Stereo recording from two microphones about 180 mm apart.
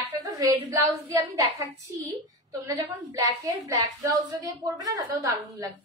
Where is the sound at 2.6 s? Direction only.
20° right (ahead or behind).